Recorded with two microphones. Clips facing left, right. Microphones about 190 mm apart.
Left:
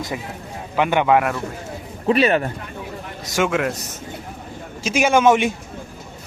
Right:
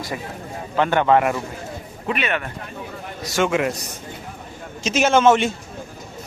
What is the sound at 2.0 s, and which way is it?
Speech, 35° left (ahead or behind).